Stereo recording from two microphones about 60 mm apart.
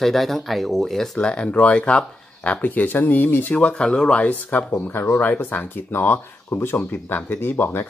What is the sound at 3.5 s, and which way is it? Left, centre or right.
Speech, centre.